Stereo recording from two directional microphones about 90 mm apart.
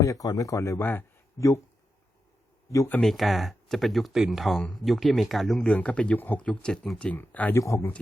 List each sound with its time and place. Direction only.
0.0 s speech: 40° left (ahead or behind)
3.0 s speech: centre (ahead or behind)
5.6 s speech: 15° left (ahead or behind)
7.5 s speech: 35° left (ahead or behind)